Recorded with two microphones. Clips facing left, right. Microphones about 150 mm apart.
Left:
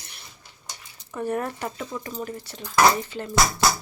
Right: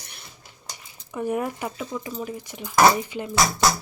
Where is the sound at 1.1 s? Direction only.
10° right (ahead or behind).